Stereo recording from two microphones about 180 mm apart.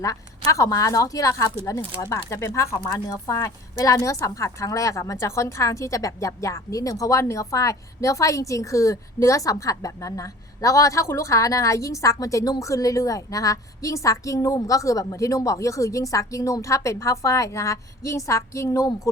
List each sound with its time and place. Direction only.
0.0 s speech: 15° left (ahead or behind)